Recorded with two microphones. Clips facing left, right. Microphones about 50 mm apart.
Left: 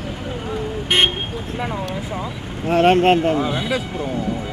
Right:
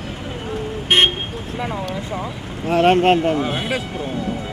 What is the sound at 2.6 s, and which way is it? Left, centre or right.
Speech, centre.